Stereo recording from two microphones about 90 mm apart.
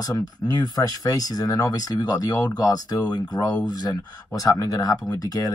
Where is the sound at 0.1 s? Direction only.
45° left (ahead or behind).